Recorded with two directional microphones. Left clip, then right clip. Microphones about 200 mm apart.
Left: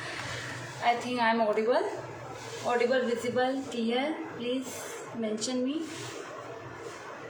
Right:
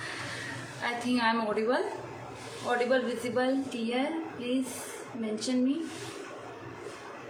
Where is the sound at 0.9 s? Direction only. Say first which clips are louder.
Left 3 dB; 15° right (ahead or behind).